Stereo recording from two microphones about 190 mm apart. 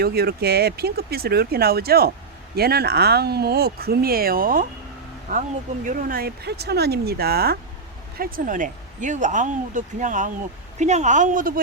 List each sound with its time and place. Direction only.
0.0 s speech: 55° right (ahead or behind)